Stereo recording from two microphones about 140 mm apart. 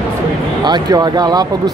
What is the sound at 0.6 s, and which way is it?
Speech, 30° right (ahead or behind).